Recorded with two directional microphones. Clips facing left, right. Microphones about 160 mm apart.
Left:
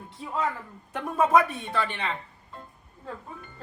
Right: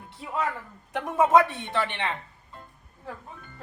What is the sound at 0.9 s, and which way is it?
Speech, 20° right (ahead or behind).